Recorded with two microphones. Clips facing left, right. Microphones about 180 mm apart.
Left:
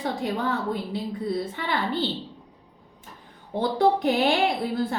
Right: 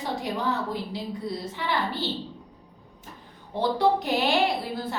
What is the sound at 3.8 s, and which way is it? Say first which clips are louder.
Speech: left 4 dB; 50° left (ahead or behind).